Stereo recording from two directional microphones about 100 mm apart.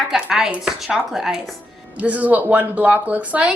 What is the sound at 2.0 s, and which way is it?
Speech, 15° right (ahead or behind).